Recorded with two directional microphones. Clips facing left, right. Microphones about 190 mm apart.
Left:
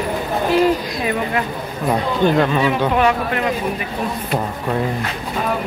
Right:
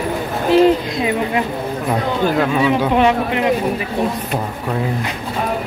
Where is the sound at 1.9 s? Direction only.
5° right (ahead or behind).